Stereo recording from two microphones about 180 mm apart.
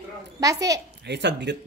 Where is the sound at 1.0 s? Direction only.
70° right (ahead or behind).